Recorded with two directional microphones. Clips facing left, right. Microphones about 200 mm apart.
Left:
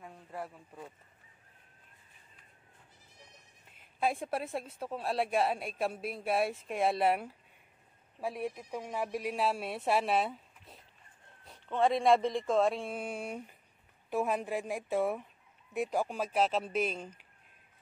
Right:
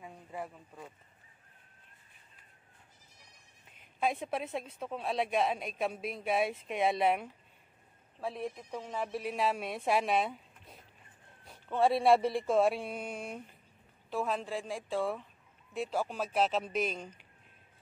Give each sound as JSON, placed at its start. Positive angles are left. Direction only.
{"t": 0.0, "sound": "speech", "side_deg": 0}
{"t": 4.0, "sound": "a woman's voice", "side_deg": 5}